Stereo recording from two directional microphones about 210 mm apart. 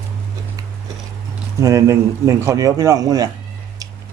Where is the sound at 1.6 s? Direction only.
15° right (ahead or behind).